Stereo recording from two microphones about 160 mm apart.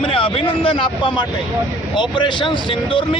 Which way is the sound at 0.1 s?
35° left (ahead or behind).